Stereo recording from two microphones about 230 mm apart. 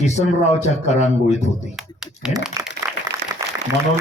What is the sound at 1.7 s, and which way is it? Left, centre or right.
Typing, centre.